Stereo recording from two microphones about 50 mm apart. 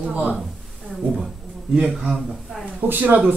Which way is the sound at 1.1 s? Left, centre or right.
Centre.